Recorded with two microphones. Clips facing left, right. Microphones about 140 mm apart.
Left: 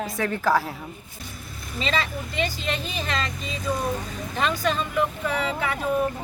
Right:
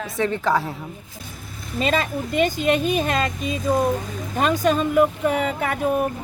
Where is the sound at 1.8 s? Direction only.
50° right (ahead or behind).